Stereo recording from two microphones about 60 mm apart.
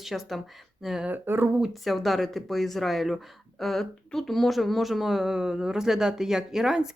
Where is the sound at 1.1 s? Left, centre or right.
Right.